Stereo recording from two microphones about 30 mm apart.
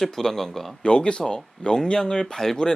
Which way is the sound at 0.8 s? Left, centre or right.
Left.